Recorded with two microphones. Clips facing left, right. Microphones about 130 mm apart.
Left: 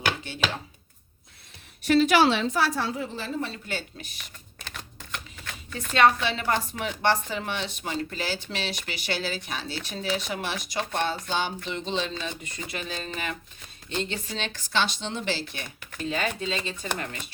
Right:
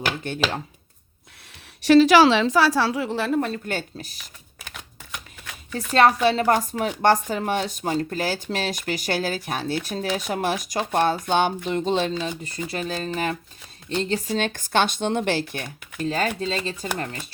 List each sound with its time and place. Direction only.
0.2 s speech: 50° right (ahead or behind)
1.8 s a woman's voice: 90° right; by 4.2 s 40° right (ahead or behind)
4.6 s shuffling cards: 10° right (ahead or behind)
6.2 s speech: 40° right (ahead or behind)
12.2 s speech: 35° right (ahead or behind)